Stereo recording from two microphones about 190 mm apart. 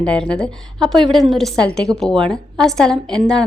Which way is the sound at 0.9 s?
25° right (ahead or behind).